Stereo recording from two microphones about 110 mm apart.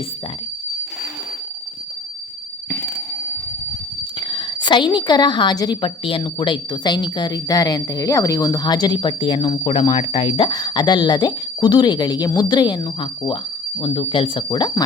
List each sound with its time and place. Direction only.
2.6 s a sound: 30° left (ahead or behind)
4.2 s a woman's voice: 45° left (ahead or behind)
9.9 s speech: 60° left (ahead or behind)
10.5 s a woman's voice: 40° left (ahead or behind)